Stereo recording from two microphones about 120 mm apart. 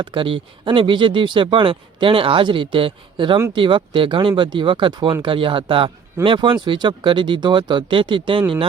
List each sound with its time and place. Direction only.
0.0 s speech: 45° right (ahead or behind)